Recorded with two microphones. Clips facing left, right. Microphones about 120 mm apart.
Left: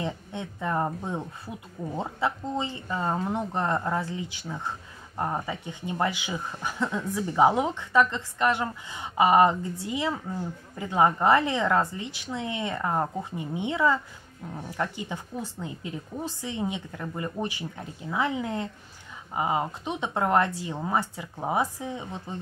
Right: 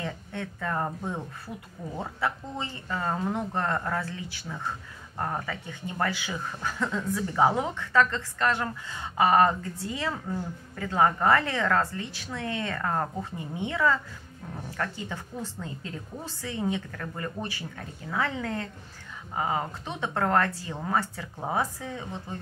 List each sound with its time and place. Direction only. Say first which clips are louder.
0.0 s speech: left 2 dB; 20° left (ahead or behind)